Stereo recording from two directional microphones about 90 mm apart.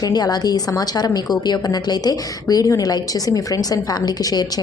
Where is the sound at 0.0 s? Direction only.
50° left (ahead or behind).